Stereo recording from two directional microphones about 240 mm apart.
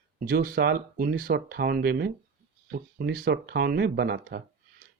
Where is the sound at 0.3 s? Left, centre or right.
Right.